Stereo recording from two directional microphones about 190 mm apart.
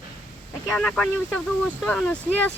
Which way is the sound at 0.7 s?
Centre (ahead or behind).